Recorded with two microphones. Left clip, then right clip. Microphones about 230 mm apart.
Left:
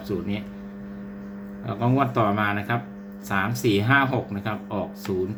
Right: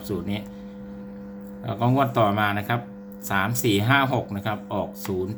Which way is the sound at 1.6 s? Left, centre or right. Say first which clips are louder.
Right 1 dB; centre.